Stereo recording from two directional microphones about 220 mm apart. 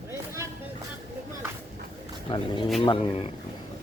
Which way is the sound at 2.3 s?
25° left (ahead or behind).